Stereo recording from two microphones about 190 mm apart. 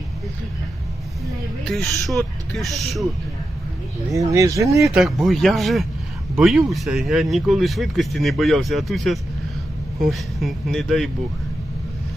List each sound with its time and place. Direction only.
1.7 s speech: centre (ahead or behind)
4.1 s speech: 15° right (ahead or behind)
4.9 s speech: centre (ahead or behind)